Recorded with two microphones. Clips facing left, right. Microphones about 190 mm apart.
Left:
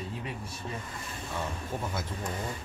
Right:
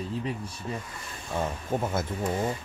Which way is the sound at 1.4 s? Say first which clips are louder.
Right 6 dB; 50° right (ahead or behind).